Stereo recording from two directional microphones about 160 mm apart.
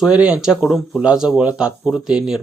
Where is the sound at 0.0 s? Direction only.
5° right (ahead or behind).